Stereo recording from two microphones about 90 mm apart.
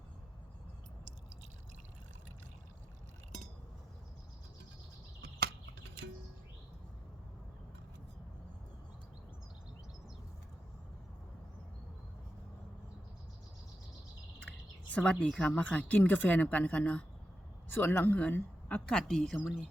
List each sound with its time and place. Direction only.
14.8 s a woman's voice: 10° left (ahead or behind)